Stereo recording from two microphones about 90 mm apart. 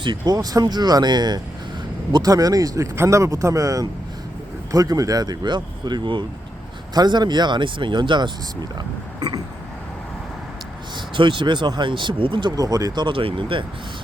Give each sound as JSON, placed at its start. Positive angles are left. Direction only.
{"t": 0.0, "sound": "speech", "side_deg": -55}
{"t": 0.3, "sound": "speech", "side_deg": -45}
{"t": 10.9, "sound": "speech", "side_deg": -65}
{"t": 12.5, "sound": "speech", "side_deg": -45}
{"t": 13.1, "sound": "speech", "side_deg": -75}